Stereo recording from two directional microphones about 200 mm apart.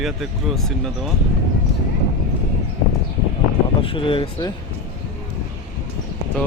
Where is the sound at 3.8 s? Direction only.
25° left (ahead or behind).